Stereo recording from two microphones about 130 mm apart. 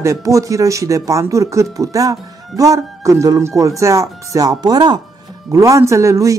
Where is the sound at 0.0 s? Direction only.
25° right (ahead or behind).